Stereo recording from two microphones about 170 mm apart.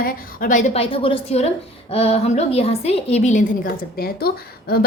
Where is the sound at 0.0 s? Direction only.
55° left (ahead or behind).